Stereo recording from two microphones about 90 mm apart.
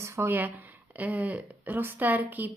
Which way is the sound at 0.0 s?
30° right (ahead or behind).